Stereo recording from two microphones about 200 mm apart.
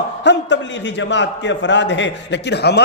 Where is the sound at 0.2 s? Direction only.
60° left (ahead or behind).